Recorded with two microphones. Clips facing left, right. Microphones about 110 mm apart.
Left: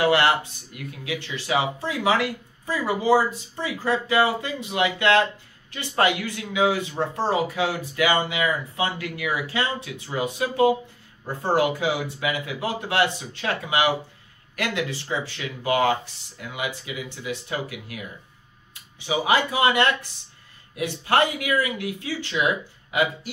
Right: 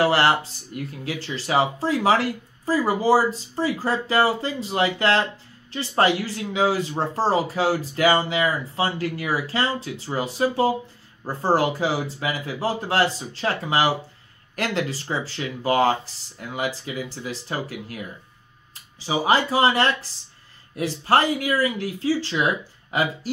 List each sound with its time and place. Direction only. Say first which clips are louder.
0.0 s speech: right 1 dB; 35° right (ahead or behind)